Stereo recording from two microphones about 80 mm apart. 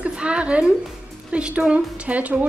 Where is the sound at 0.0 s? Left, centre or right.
Centre.